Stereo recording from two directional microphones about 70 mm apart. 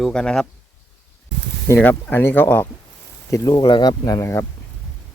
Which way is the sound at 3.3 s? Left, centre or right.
Left.